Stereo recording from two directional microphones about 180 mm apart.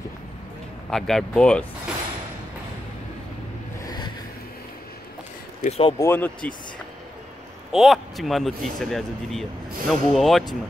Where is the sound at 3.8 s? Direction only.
25° left (ahead or behind).